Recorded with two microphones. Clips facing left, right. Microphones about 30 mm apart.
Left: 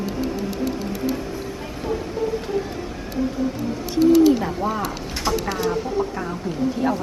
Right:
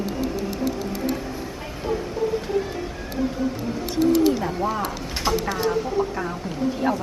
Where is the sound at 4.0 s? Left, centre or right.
Left.